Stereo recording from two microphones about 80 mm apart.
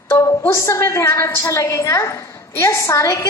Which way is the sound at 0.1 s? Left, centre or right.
Left.